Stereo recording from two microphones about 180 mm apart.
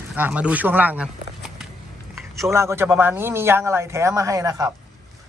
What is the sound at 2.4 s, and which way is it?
A man's voice, 15° right (ahead or behind).